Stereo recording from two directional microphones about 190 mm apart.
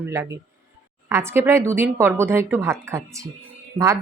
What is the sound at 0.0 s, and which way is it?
Speech, 15° right (ahead or behind).